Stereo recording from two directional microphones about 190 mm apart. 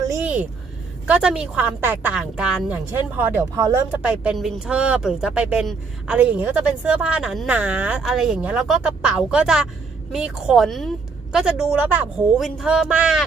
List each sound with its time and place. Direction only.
0.1 s a sound: 10° right (ahead or behind)
1.0 s speech: 5° right (ahead or behind)
3.5 s speech: 20° right (ahead or behind)
3.9 s speech: 5° right (ahead or behind)